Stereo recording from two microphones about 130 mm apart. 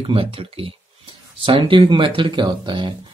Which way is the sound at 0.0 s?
45° right (ahead or behind).